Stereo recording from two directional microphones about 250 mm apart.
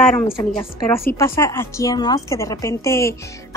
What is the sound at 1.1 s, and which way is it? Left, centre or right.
A woman's voice, centre.